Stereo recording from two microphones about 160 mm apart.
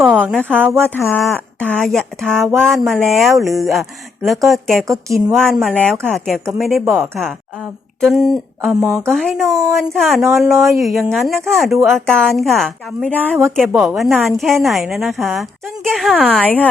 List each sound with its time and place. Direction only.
0.0 s a sound: 5° right (ahead or behind)
0.4 s speech: 10° right (ahead or behind)
1.3 s a woman's voice: 10° left (ahead or behind)
9.5 s a woman's voice: 20° right (ahead or behind)
9.7 s a woman's voice: centre (ahead or behind)